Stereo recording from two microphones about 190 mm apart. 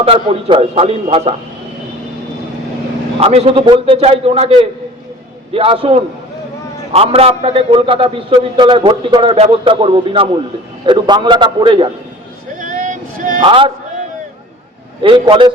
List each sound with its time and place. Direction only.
0.0 s a man's voice: 30° right (ahead or behind)
3.2 s a man's voice: 30° right (ahead or behind)
12.5 s a sound: 40° right (ahead or behind)
13.4 s a man's voice: 25° right (ahead or behind)
15.0 s a man's voice: 25° right (ahead or behind)